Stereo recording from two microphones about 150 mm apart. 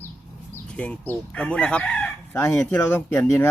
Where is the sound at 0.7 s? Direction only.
10° left (ahead or behind).